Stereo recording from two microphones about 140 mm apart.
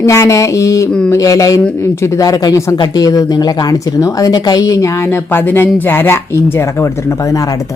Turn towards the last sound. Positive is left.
turn(degrees=25)  # may be behind; listen again after turning